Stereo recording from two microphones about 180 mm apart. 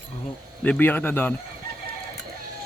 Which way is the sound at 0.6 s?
10° left (ahead or behind).